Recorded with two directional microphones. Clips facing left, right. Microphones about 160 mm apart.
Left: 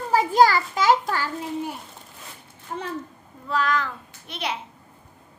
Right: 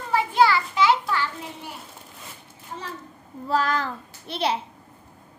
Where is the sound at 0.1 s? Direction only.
40° left (ahead or behind).